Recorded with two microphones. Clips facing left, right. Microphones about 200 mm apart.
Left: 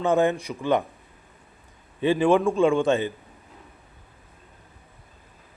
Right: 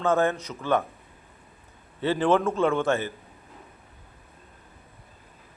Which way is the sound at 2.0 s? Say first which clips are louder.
Left 3 dB; 15° left (ahead or behind).